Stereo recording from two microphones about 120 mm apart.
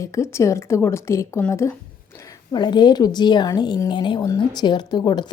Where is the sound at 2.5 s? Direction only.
35° left (ahead or behind).